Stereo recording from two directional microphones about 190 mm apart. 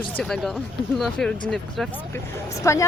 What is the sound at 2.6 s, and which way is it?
Speech, 15° left (ahead or behind).